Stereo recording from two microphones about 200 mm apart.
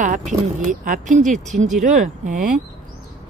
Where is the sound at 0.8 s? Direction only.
40° right (ahead or behind).